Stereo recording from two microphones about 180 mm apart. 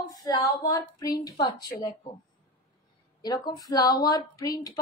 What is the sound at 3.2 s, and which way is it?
A woman's voice, 20° left (ahead or behind).